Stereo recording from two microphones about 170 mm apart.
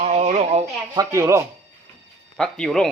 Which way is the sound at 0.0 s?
40° right (ahead or behind).